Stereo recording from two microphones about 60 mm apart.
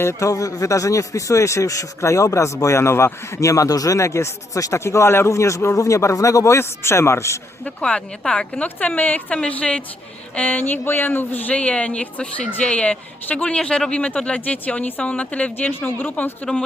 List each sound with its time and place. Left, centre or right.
0.0 s a man's voice: left
0.3 s speech: left
3.4 s speech: left
4.8 s speech: left
6.6 s a man's voice: left
7.6 s a woman's voice: centre
8.6 s a woman's voice: left
14.4 s speech: left